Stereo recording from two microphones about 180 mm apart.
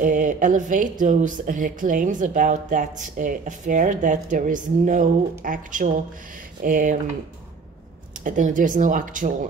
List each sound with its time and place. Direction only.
0.0 s speech: 45° right (ahead or behind)
8.2 s speech: 45° right (ahead or behind)